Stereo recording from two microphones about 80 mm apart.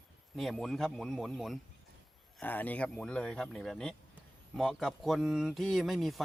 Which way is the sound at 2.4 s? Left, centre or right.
Left.